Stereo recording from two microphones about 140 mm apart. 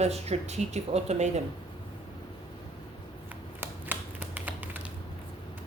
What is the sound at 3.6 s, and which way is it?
Typewriter, 10° right (ahead or behind).